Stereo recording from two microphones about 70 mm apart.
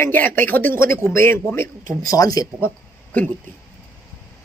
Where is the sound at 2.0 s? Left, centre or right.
Left.